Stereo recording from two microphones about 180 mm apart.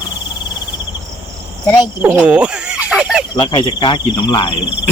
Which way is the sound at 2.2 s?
5° right (ahead or behind).